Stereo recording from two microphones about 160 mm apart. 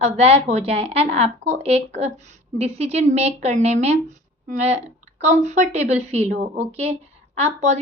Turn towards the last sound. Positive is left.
turn(degrees=-45)  # may be behind; listen again after turning